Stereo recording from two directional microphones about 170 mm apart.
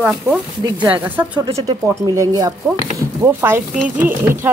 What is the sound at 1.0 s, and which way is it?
Speech, 10° right (ahead or behind).